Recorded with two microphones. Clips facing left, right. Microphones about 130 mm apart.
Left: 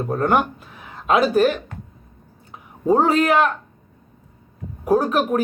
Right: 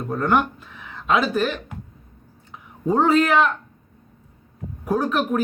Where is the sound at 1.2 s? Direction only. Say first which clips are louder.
Left 6 dB; 45° left (ahead or behind).